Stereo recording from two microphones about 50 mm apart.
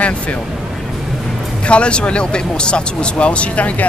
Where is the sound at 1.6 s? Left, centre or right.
Left.